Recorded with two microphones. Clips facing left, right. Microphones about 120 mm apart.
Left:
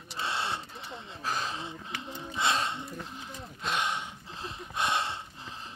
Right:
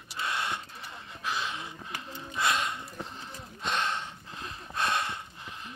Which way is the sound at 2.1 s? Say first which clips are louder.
Even; 25° left (ahead or behind).